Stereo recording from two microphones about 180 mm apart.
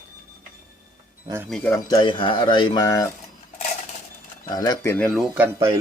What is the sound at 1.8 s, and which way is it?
Speech, 25° left (ahead or behind).